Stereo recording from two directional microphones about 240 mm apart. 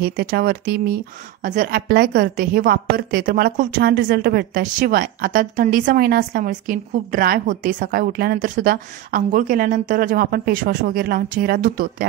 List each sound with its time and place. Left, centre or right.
0.0 s a woman's voice: right